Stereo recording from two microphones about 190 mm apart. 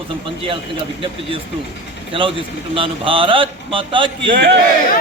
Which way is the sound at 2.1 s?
30° right (ahead or behind).